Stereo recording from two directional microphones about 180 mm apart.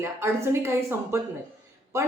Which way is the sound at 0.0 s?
15° right (ahead or behind).